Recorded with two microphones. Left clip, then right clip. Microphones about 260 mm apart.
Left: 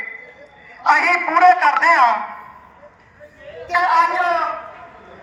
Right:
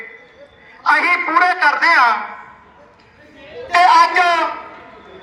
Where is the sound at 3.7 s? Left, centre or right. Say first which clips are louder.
Right 5 dB; right.